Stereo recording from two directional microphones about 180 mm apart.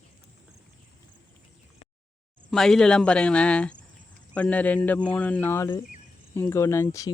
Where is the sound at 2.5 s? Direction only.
5° left (ahead or behind).